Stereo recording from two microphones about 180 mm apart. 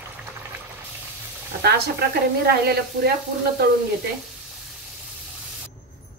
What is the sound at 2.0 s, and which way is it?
A woman's voice, 60° right (ahead or behind).